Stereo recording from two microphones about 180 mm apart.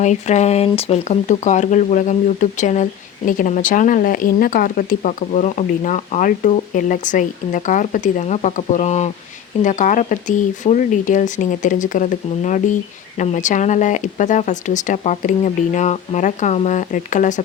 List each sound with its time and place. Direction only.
0.0 s speech: 40° left (ahead or behind)